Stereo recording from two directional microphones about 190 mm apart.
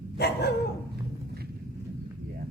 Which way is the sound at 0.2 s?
60° left (ahead or behind).